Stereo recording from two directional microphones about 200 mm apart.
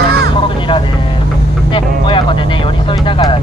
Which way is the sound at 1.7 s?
25° left (ahead or behind).